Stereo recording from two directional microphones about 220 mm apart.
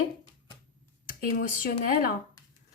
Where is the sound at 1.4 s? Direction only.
40° left (ahead or behind).